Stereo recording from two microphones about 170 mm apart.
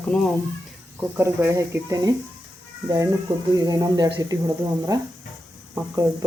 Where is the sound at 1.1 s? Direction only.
15° right (ahead or behind).